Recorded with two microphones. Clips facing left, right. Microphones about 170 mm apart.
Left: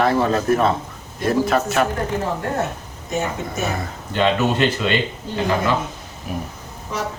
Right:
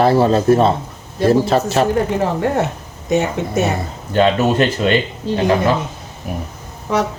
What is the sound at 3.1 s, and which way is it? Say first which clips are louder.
Speech: right 7 dB; 70° right (ahead or behind).